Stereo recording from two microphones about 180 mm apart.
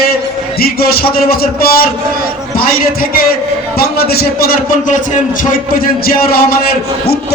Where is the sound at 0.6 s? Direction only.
55° left (ahead or behind).